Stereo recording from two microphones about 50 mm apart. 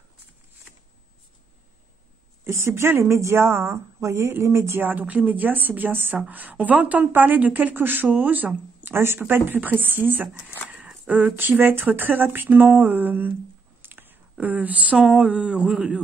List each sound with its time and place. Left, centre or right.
2.6 s speech: right
4.7 s a woman's voice: right
8.9 s speech: right
9.3 s a woman's voice: right
11.3 s a woman's voice: right
13.7 s a sound: right
14.4 s speech: right; by 16.0 s centre